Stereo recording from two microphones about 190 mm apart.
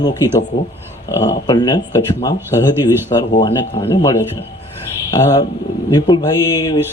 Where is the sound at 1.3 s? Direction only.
20° left (ahead or behind).